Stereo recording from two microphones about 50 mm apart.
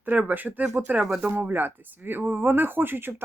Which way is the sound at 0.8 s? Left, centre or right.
Right.